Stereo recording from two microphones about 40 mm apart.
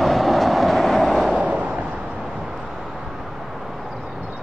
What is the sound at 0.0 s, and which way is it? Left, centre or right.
Train, centre.